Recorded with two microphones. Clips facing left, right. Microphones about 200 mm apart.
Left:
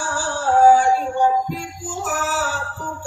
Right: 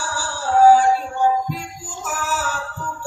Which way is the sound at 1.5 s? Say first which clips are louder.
Left 2 dB; 45° left (ahead or behind).